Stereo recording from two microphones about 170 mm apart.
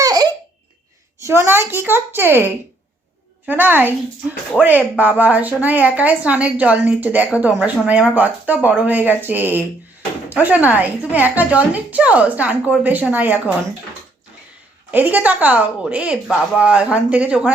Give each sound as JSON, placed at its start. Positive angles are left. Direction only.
{"t": 0.0, "sound": "a sound", "side_deg": -20}
{"t": 1.2, "sound": "speech", "side_deg": -15}
{"t": 14.8, "sound": "speech", "side_deg": -10}